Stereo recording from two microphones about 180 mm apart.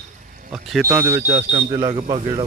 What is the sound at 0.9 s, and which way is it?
Speech, 15° right (ahead or behind).